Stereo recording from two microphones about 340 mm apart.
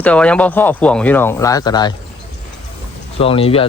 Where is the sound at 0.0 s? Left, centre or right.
Centre.